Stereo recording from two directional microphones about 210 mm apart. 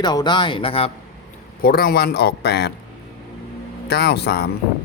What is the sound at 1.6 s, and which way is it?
Speech, 45° left (ahead or behind).